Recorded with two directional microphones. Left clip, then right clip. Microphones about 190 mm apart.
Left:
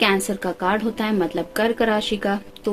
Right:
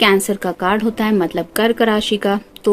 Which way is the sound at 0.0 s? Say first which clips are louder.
Right 6 dB; 45° right (ahead or behind).